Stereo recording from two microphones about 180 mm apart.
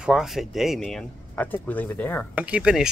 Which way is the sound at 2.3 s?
5° right (ahead or behind).